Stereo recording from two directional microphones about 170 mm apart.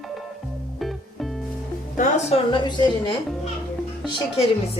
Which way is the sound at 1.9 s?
50° left (ahead or behind).